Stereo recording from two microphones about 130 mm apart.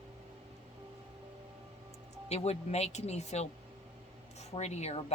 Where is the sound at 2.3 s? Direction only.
55° left (ahead or behind).